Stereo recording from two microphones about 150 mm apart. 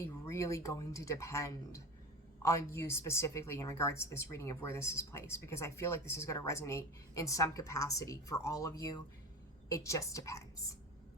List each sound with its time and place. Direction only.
0.0 s a woman's voice: 20° left (ahead or behind)